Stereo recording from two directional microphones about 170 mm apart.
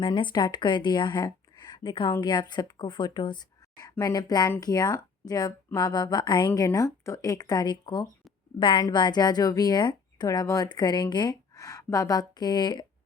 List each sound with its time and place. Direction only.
0.0 s speech: 25° left (ahead or behind)